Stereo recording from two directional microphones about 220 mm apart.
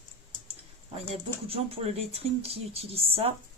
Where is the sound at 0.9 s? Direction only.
25° right (ahead or behind).